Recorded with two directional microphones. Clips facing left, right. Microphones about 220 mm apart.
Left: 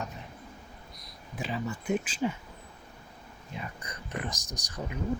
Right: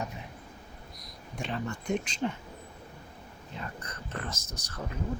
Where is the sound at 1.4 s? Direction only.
5° left (ahead or behind).